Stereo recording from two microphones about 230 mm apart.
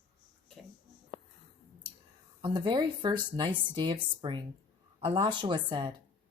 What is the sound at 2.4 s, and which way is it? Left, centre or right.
Speech, right.